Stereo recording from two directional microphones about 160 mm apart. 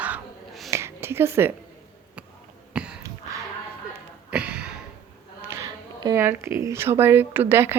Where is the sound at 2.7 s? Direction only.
5° right (ahead or behind).